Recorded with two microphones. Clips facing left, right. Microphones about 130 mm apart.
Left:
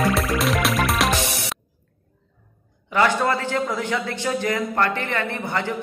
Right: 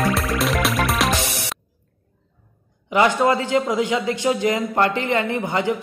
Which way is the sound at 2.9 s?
15° right (ahead or behind).